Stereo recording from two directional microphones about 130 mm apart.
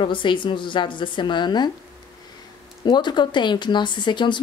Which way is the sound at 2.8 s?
35° left (ahead or behind).